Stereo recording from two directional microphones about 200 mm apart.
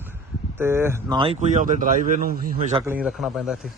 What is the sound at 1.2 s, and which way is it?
Speech, 35° right (ahead or behind).